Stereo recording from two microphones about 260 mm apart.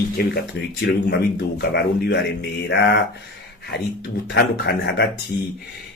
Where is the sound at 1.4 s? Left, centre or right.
Left.